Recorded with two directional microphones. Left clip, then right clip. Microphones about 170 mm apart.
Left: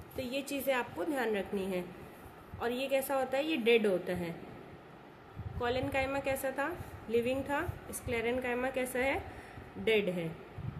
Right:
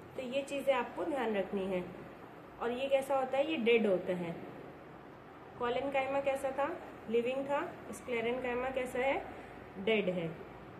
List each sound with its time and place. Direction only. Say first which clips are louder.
0.2 s a woman's voice: even; 75° left (ahead or behind)
5.6 s a woman's voice: left 1 dB; 75° left (ahead or behind)